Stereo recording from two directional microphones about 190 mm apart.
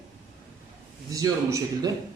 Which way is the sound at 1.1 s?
15° right (ahead or behind).